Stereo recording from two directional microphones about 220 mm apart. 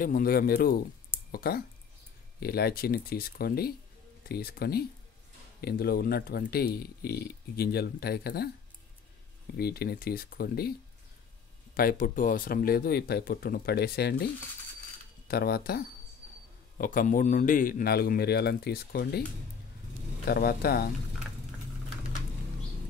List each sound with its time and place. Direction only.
0.0 s speech: 40° left (ahead or behind)
9.5 s speech: 45° left (ahead or behind)
11.7 s speech: 40° left (ahead or behind)
20.2 s speech: 45° left (ahead or behind)